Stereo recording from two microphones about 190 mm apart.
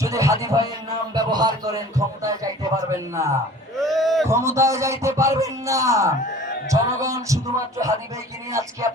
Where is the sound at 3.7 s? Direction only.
Centre (ahead or behind).